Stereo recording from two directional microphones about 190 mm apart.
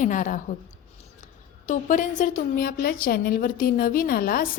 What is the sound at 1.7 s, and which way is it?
A woman's voice, 40° left (ahead or behind).